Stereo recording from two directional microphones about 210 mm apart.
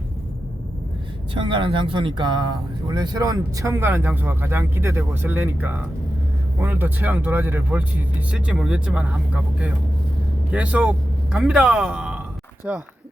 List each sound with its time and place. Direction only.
1.3 s speech: 25° right (ahead or behind); by 12.8 s 5° right (ahead or behind)